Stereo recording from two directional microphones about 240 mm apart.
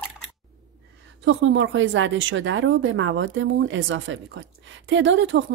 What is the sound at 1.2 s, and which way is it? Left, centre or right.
A woman's voice, right.